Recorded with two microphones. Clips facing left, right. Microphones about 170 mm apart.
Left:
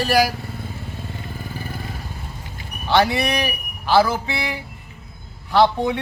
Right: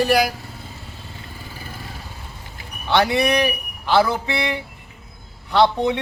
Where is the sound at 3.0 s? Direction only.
20° right (ahead or behind).